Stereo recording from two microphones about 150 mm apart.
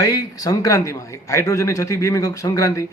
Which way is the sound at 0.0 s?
25° left (ahead or behind).